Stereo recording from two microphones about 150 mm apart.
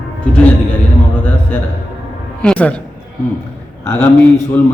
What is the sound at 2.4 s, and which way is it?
Speech, 10° left (ahead or behind).